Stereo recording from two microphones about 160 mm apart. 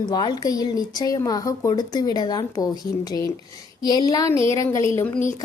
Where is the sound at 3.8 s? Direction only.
25° left (ahead or behind).